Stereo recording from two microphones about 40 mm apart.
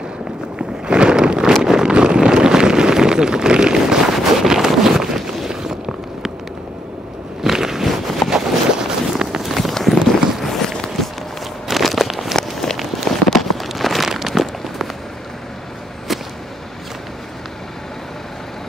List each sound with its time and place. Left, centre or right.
0.6 s a sound: right
7.4 s a sound: centre
9.1 s run: centre
9.4 s run: centre
10.4 s walk: centre
11.7 s walk: centre
12.4 s walk: centre
12.7 s a sound: centre
16.1 s whip: centre